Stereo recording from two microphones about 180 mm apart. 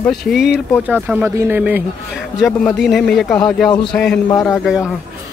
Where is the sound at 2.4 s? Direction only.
5° left (ahead or behind).